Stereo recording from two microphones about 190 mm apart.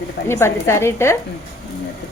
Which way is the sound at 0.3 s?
15° left (ahead or behind).